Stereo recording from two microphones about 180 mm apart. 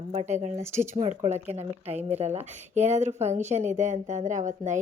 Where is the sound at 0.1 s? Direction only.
40° right (ahead or behind).